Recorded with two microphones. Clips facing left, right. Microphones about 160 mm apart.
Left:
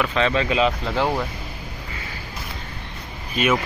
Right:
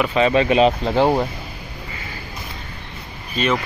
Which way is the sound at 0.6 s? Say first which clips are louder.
Right 5 dB; 30° right (ahead or behind).